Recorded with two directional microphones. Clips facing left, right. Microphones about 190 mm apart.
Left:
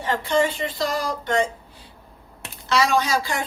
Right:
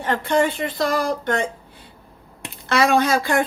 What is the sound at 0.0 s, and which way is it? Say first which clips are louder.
Speech: right 2 dB; 55° right (ahead or behind).